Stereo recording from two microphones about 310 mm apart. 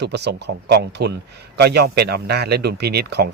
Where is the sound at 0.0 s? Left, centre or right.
Right.